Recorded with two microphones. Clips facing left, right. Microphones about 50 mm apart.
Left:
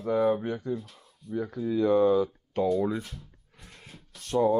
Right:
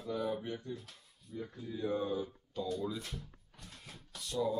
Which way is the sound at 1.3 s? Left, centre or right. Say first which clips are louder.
Left 13 dB; left.